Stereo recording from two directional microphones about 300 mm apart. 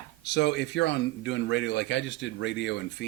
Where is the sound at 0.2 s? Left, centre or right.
Left.